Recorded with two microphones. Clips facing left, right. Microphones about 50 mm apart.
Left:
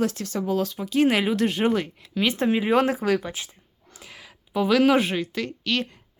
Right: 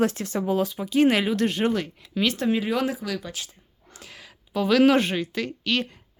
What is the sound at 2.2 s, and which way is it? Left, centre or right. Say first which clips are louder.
Speech: left 1 dB; centre.